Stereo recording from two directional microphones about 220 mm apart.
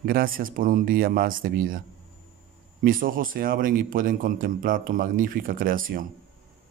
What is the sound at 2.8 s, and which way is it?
Speech, 40° right (ahead or behind).